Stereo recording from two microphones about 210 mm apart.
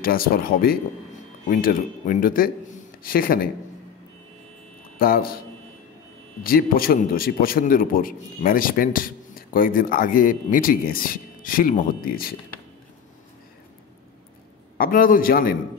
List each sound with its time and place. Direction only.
0.0 s a man's voice: 45° left (ahead or behind)
4.9 s a man's voice: 45° left (ahead or behind)
6.4 s a man's voice: 45° left (ahead or behind)
14.8 s a man's voice: 40° left (ahead or behind)